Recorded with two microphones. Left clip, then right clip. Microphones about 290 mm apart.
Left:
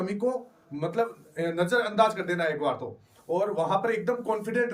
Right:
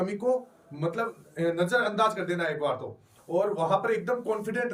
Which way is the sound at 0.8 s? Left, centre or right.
Centre.